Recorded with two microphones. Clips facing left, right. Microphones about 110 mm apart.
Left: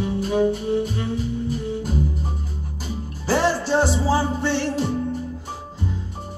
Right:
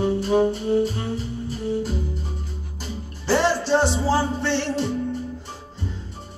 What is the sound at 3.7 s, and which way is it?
Music, 5° left (ahead or behind).